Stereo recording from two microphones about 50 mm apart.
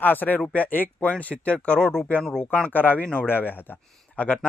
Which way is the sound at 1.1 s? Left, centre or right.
Left.